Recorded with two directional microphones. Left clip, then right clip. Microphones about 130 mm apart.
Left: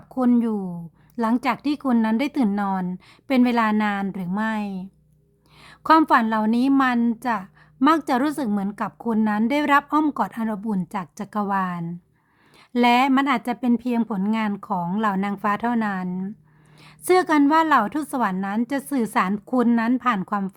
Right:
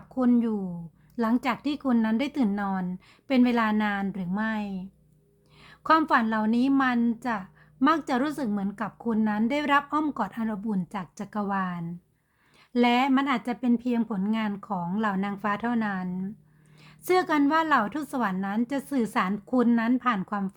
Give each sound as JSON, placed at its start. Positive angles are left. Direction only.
{"t": 0.1, "sound": "a woman's voice", "side_deg": 45}